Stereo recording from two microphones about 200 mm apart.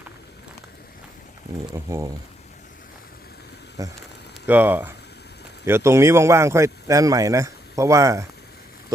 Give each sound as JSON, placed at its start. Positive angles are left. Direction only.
{"t": 1.7, "sound": "speech", "side_deg": -15}
{"t": 3.8, "sound": "speech", "side_deg": -15}